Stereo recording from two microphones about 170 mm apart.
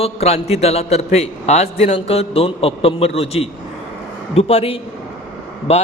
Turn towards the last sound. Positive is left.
turn(degrees=35)  # may be behind; listen again after turning